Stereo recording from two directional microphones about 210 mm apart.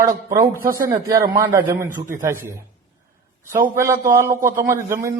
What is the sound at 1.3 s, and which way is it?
A man's voice, 20° right (ahead or behind).